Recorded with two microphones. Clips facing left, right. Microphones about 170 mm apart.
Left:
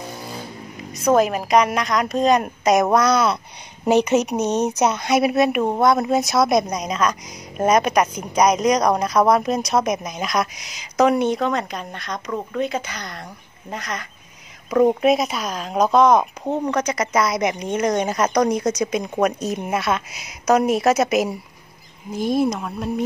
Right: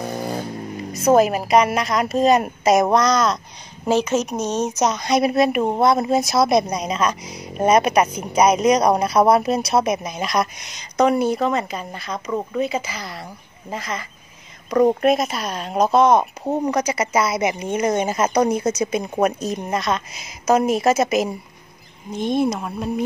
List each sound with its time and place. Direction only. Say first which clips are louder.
1.0 s a woman's voice: right 2 dB; 5° right (ahead or behind)